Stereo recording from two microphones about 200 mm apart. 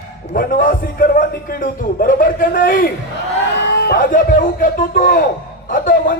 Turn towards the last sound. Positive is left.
turn(degrees=45)  # may be behind; listen again after turning